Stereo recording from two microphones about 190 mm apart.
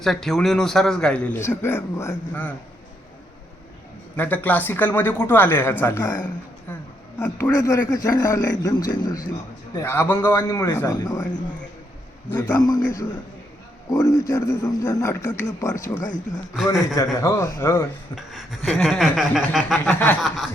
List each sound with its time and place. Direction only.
0.0 s a man's voice: centre (ahead or behind)
4.2 s speech: 10° left (ahead or behind)
12.4 s a man's voice: 20° left (ahead or behind)
16.0 s speech: 40° left (ahead or behind)
16.8 s speech: 15° left (ahead or behind)
18.1 s a man's voice: centre (ahead or behind)